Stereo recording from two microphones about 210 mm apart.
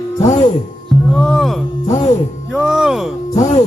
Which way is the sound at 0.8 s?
5° left (ahead or behind).